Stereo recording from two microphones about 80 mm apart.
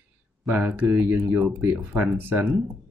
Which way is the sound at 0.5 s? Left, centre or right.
Right.